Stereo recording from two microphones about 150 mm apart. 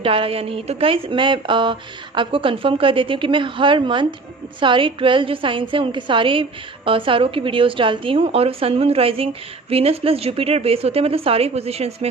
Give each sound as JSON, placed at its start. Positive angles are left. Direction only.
{"t": 0.0, "sound": "a woman's voice", "side_deg": -40}